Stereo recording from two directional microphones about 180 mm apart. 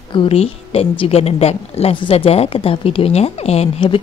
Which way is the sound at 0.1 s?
30° left (ahead or behind).